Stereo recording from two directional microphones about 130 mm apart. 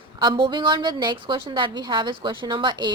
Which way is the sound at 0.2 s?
40° right (ahead or behind).